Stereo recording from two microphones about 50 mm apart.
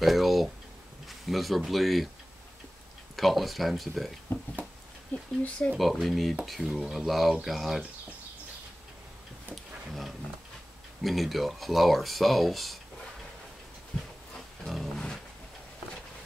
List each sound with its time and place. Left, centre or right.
0.0 s a sound: centre
1.0 s a man's voice: centre
3.2 s speech: centre
4.3 s speech: left
5.1 s speech: left
5.8 s speech: centre
11.0 s speech: centre
13.9 s a sound: centre